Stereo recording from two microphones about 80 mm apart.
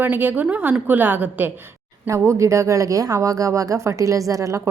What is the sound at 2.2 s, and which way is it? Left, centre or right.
A woman's voice, right.